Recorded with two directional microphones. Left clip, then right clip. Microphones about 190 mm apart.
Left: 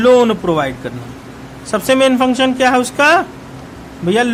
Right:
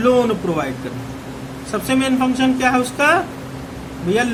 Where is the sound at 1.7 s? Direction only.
45° left (ahead or behind).